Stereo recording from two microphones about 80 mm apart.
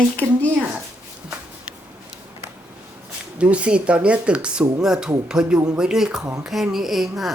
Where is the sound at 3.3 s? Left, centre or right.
Centre.